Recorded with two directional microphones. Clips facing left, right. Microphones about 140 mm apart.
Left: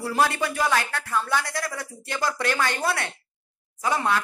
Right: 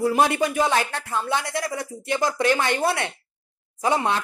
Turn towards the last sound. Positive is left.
turn(degrees=-20)  # may be behind; listen again after turning